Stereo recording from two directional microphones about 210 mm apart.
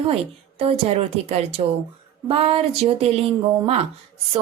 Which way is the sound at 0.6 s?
30° right (ahead or behind).